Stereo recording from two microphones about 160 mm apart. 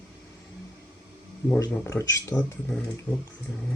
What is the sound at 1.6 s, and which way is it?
Speech, 20° left (ahead or behind).